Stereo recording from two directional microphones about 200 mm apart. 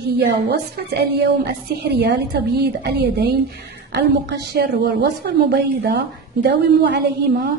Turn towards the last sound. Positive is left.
turn(degrees=-60)  # may be behind; listen again after turning